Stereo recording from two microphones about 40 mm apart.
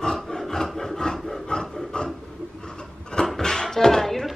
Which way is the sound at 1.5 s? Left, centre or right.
Centre.